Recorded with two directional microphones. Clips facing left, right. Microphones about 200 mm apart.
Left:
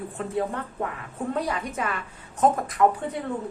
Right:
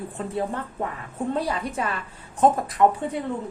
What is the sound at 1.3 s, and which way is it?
A woman's voice, 30° right (ahead or behind).